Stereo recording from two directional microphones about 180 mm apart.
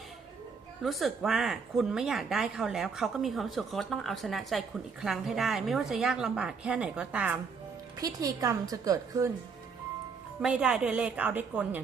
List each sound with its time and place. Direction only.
0.8 s speech: centre (ahead or behind)
7.9 s a woman's voice: 20° right (ahead or behind)
10.4 s a woman's voice: 5° right (ahead or behind)